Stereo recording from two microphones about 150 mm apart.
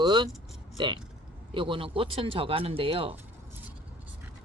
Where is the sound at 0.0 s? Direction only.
30° right (ahead or behind).